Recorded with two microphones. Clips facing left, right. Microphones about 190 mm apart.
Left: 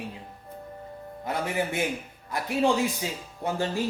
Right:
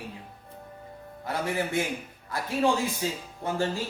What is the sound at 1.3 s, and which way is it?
Speech, 20° left (ahead or behind).